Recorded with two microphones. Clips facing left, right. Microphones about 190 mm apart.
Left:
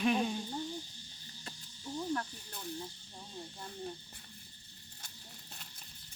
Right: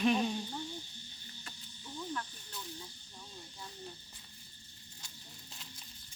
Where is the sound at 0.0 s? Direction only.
Centre (ahead or behind).